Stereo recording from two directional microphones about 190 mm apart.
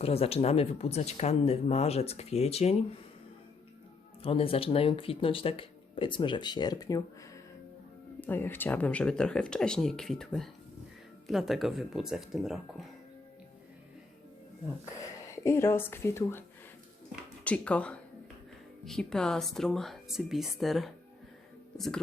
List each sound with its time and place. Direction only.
0.0 s speech: 30° left (ahead or behind)
4.2 s speech: 30° left (ahead or behind)
8.2 s speech: 10° left (ahead or behind)
15.3 s a woman's voice: 15° left (ahead or behind)
17.4 s speech: 5° left (ahead or behind)